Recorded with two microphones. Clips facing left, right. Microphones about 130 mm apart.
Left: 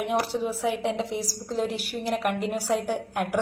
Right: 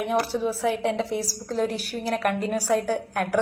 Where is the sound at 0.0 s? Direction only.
20° left (ahead or behind).